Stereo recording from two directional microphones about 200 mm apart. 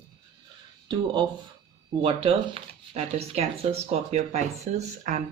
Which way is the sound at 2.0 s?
25° right (ahead or behind).